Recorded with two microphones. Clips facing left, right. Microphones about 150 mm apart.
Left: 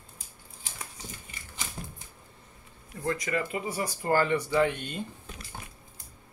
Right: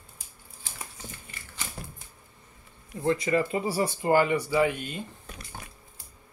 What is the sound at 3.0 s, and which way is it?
Speech, 30° right (ahead or behind).